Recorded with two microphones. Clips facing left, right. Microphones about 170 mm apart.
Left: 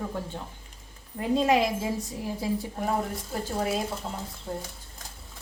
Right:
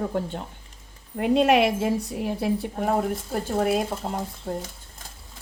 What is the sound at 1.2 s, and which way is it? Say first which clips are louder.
A woman's voice: right 4 dB; 70° right (ahead or behind).